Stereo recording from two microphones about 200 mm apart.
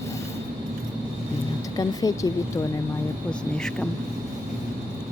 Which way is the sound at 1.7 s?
20° left (ahead or behind).